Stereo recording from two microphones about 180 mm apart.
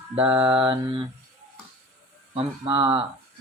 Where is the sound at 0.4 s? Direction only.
30° right (ahead or behind).